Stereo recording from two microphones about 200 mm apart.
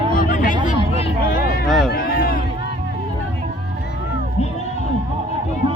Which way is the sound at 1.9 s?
50° left (ahead or behind).